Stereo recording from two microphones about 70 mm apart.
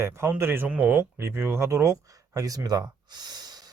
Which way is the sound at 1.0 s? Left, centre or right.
Right.